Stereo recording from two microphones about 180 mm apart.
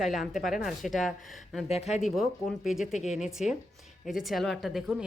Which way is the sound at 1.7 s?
35° left (ahead or behind).